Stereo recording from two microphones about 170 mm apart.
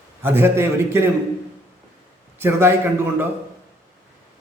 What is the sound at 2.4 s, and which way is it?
Speech, 15° right (ahead or behind).